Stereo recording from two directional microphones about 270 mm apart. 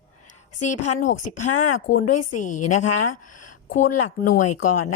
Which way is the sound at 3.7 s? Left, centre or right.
Left.